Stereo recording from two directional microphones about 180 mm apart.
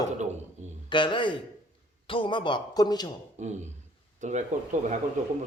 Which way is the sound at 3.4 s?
40° right (ahead or behind).